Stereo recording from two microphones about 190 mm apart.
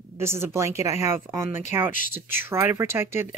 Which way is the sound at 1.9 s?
45° left (ahead or behind).